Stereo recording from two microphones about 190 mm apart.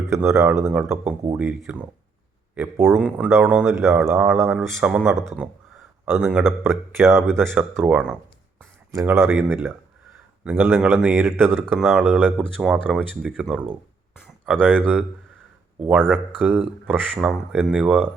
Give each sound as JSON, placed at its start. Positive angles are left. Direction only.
{"t": 0.1, "sound": "speech", "side_deg": -15}
{"t": 5.0, "sound": "speech", "side_deg": -15}
{"t": 8.9, "sound": "speech", "side_deg": -15}
{"t": 12.4, "sound": "speech", "side_deg": 0}
{"t": 15.9, "sound": "speech", "side_deg": 5}
{"t": 16.1, "sound": "speech", "side_deg": -10}